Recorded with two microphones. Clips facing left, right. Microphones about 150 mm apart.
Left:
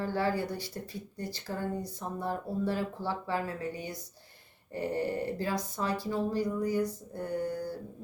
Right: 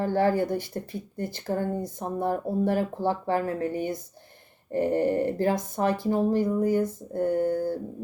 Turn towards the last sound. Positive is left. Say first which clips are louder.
# right 9 dB
turn(degrees=-50)  # may be behind; listen again after turning